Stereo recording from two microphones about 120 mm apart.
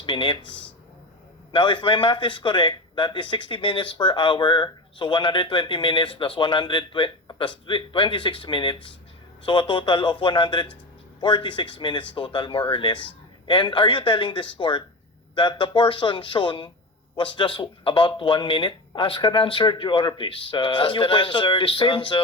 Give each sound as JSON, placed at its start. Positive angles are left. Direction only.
{"t": 0.0, "sound": "a man's voice", "side_deg": 45}
{"t": 1.5, "sound": "a man's voice", "side_deg": 45}